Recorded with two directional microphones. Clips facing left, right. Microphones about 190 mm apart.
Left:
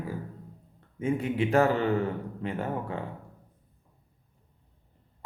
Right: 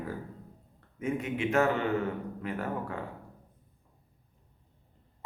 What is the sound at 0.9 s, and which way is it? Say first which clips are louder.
Speech: left 4 dB; 30° left (ahead or behind).